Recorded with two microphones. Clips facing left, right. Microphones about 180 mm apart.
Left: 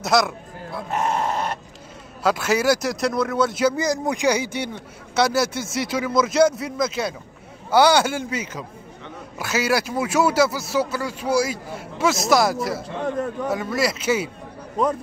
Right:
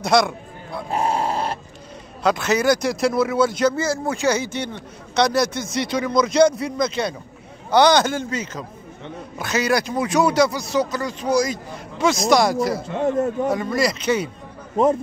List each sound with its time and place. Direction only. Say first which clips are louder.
0.0 s speech: right 2 dB; centre (ahead or behind)
0.8 s grunt: right 1 dB; 30° right (ahead or behind)
2.2 s speech: right 1 dB; 5° left (ahead or behind)
13.0 s a man's voice: right 6 dB; 25° right (ahead or behind)
13.5 s speech: right 2 dB; 5° left (ahead or behind)